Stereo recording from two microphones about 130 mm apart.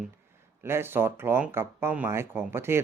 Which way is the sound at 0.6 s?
20° right (ahead or behind).